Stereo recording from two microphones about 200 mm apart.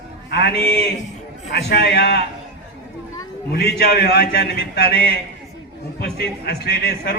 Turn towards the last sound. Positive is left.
turn(degrees=55)  # may be behind; listen again after turning